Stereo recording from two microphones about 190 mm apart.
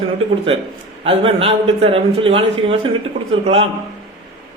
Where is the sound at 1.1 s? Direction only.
30° right (ahead or behind).